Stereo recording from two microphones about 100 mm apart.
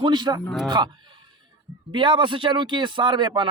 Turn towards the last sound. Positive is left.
turn(degrees=-50)  # may be behind; listen again after turning